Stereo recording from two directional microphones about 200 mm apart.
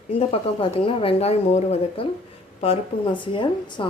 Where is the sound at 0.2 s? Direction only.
30° left (ahead or behind).